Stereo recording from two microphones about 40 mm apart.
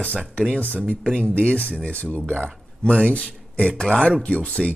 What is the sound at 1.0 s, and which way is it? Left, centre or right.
Speech, centre.